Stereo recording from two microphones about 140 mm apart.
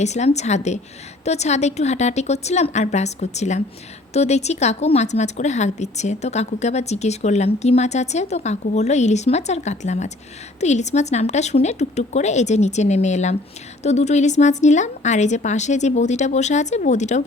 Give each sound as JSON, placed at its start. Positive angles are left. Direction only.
{"t": 0.0, "sound": "a woman's voice", "side_deg": 55}